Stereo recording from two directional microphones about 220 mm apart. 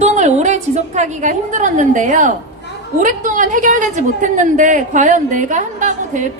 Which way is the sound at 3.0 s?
35° right (ahead or behind).